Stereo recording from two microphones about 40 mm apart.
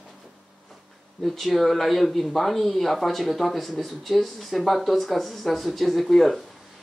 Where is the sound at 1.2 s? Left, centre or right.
Centre.